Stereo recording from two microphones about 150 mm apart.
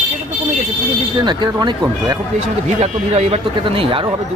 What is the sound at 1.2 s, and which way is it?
Speech, 30° right (ahead or behind).